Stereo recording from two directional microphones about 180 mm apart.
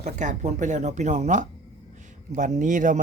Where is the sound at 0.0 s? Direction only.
40° right (ahead or behind).